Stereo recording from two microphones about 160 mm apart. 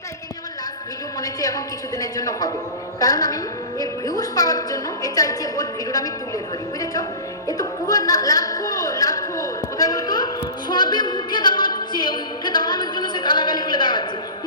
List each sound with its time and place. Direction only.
1.2 s a woman's voice: 25° left (ahead or behind)
7.4 s music: 25° left (ahead or behind)
10.7 s a sound: 25° left (ahead or behind)